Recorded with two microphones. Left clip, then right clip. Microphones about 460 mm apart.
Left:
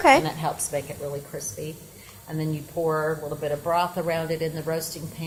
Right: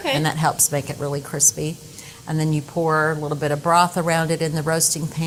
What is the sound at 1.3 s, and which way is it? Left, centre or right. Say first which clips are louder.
Speech: right 12 dB; right.